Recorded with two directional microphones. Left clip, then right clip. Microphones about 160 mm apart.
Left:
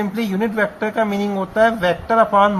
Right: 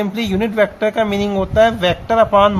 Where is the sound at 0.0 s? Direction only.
35° right (ahead or behind).